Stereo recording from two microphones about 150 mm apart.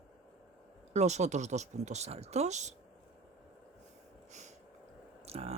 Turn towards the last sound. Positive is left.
turn(degrees=-40)  # may be behind; listen again after turning